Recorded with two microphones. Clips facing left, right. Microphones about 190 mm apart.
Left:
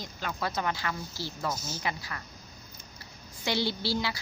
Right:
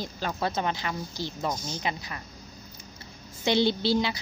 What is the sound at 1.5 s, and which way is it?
Speech, 5° left (ahead or behind).